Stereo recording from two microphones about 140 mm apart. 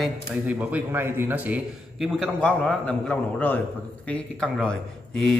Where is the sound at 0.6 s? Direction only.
10° right (ahead or behind).